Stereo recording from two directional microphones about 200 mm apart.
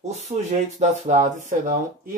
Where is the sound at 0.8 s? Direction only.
35° right (ahead or behind).